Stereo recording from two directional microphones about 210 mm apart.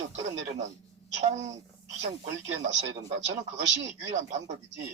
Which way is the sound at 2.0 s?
30° right (ahead or behind).